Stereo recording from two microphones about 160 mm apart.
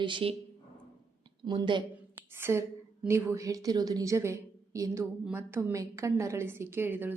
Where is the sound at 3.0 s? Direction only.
20° right (ahead or behind).